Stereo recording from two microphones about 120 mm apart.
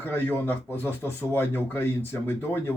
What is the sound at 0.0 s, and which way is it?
Speech, 15° left (ahead or behind).